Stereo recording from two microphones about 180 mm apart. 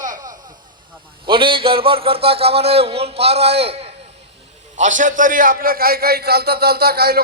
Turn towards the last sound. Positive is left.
turn(degrees=-60)  # may be behind; listen again after turning